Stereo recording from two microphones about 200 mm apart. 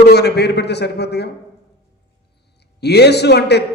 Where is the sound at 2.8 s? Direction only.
55° left (ahead or behind).